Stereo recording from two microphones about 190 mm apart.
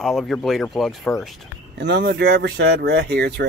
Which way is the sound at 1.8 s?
65° right (ahead or behind).